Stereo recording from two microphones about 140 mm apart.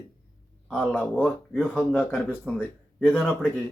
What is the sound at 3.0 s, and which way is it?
Speech, centre (ahead or behind).